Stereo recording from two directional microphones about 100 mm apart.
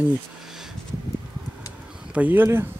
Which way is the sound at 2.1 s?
15° right (ahead or behind).